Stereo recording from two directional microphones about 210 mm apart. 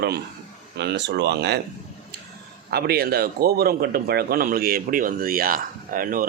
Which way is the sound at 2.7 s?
50° right (ahead or behind).